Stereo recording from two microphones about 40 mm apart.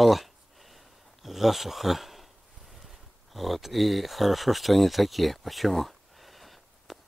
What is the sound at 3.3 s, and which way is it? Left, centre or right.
Speech, centre.